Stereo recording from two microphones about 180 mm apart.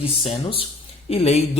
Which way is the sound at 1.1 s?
35° left (ahead or behind).